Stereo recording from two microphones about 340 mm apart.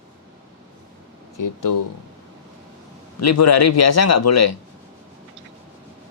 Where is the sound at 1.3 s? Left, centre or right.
Left.